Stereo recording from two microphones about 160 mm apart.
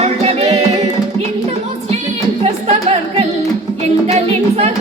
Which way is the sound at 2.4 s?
40° right (ahead or behind).